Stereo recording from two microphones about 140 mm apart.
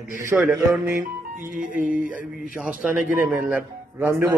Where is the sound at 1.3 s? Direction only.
70° right (ahead or behind).